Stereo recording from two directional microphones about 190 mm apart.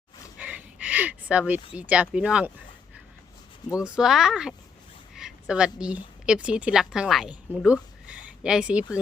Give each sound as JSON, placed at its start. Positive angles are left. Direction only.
{"t": 0.3, "sound": "a sound", "side_deg": -10}
{"t": 1.7, "sound": "speech", "side_deg": -5}
{"t": 3.8, "sound": "a woman's voice", "side_deg": -5}